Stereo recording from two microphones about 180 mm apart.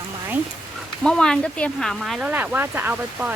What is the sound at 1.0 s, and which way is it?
Speech, 5° left (ahead or behind).